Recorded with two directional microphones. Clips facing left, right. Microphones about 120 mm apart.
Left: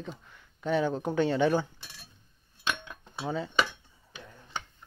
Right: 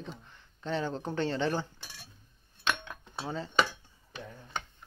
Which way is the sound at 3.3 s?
5° left (ahead or behind).